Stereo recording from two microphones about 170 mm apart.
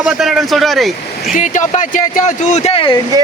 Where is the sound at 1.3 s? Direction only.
45° left (ahead or behind).